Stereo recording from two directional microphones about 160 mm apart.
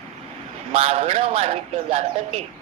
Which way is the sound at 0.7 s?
35° right (ahead or behind).